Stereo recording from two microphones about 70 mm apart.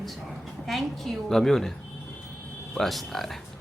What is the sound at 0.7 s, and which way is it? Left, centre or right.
Speech, centre.